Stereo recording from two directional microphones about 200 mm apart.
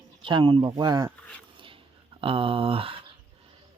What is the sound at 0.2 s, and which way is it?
Speech, 25° right (ahead or behind).